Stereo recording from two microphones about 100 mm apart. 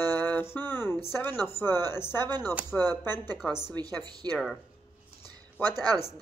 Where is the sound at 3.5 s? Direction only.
25° left (ahead or behind).